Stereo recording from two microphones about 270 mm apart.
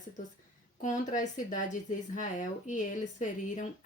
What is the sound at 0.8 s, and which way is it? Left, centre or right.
Speech, left.